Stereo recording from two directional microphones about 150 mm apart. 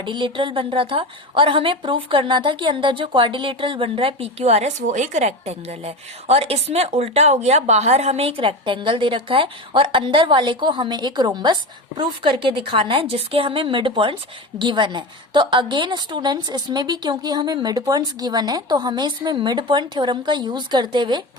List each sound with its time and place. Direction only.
0.0 s a woman's voice: 30° right (ahead or behind)